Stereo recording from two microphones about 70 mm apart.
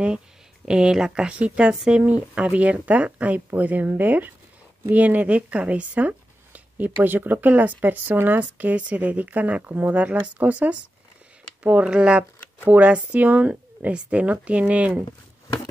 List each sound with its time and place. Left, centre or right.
0.7 s speech: centre